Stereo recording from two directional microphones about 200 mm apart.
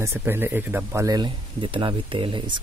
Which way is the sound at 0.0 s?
10° right (ahead or behind).